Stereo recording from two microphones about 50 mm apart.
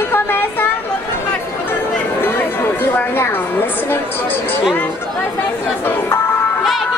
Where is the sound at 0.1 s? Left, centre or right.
Left.